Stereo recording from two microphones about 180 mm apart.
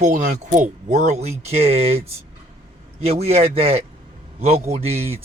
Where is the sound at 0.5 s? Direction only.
45° right (ahead or behind).